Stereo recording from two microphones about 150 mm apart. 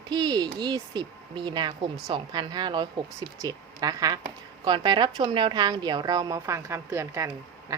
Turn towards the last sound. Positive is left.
turn(degrees=-20)  # may be behind; listen again after turning